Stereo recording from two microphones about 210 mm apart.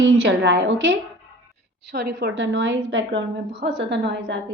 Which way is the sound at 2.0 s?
55° right (ahead or behind).